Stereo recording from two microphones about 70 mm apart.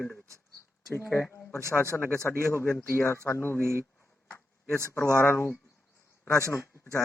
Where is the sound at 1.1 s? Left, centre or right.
Left.